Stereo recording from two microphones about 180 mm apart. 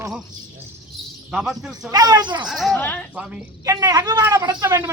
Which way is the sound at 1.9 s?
20° right (ahead or behind).